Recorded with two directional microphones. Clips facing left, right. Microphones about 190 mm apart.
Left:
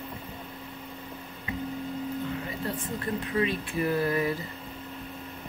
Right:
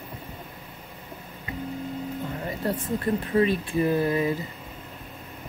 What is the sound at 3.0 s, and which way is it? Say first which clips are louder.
Speech: right 5 dB; 35° right (ahead or behind).